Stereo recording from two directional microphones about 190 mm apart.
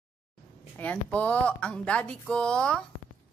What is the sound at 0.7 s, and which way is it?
Speech, 10° left (ahead or behind).